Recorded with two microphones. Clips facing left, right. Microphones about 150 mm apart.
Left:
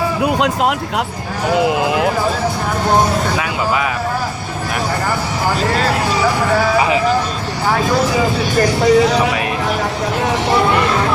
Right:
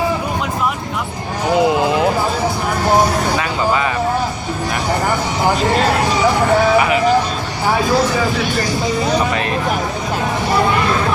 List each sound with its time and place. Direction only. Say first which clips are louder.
0.2 s speech: left 5 dB; 80° left
1.5 s speech: right 1 dB; 5° left (ahead or behind)
8.6 s speech: left 7 dB; 75° left (ahead or behind)